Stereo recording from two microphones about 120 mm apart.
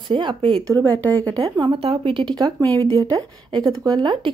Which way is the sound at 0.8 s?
15° left (ahead or behind).